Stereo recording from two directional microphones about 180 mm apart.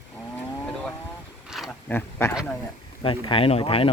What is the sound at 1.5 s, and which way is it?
Wild animals, 5° right (ahead or behind).